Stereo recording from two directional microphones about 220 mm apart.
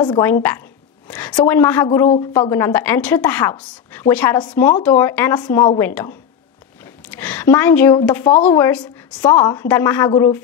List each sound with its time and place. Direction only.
0.0 s a woman's voice: 15° left (ahead or behind)
1.0 s a sound: 5° left (ahead or behind)
1.3 s a woman's voice: 15° left (ahead or behind)
2.5 s a woman's voice: 10° left (ahead or behind)
7.1 s a woman's voice: 5° left (ahead or behind)